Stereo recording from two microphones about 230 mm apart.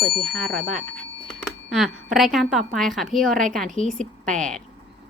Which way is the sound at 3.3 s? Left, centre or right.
Right.